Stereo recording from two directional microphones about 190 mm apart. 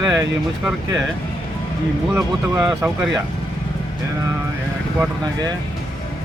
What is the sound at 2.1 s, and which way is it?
Speech, 5° right (ahead or behind).